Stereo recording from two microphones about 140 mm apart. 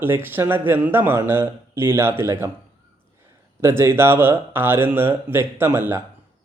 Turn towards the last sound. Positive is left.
turn(degrees=-15)  # may be behind; listen again after turning